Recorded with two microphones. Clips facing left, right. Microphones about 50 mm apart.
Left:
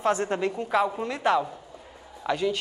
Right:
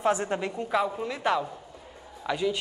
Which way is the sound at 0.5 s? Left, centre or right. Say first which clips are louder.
Left 2 dB; centre.